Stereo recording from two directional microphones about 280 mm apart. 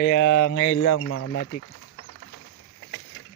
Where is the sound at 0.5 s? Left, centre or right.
Left.